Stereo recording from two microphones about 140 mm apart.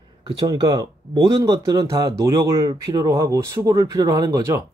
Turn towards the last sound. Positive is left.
turn(degrees=-25)  # may be behind; listen again after turning